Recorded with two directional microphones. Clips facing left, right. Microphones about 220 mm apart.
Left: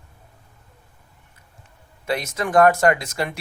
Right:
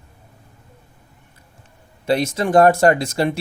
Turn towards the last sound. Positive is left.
turn(degrees=-30)  # may be behind; listen again after turning